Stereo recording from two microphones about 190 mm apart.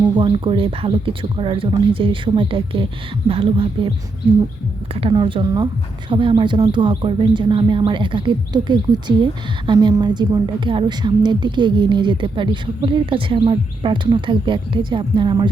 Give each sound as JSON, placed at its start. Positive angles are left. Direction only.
{"t": 0.2, "sound": "speech", "side_deg": -25}
{"t": 4.9, "sound": "speech", "side_deg": -30}